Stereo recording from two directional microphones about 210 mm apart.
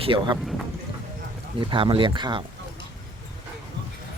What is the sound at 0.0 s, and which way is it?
Speech, 25° right (ahead or behind).